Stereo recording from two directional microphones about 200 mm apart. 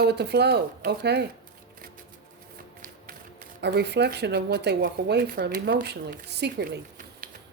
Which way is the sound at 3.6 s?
55° right (ahead or behind).